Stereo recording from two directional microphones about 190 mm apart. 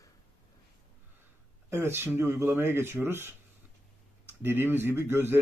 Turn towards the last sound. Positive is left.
turn(degrees=-10)  # may be behind; listen again after turning